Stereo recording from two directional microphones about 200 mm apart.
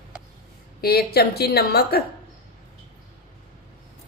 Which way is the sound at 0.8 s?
50° left (ahead or behind).